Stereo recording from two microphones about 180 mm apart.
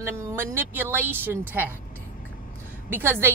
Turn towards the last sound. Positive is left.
turn(degrees=-10)  # may be behind; listen again after turning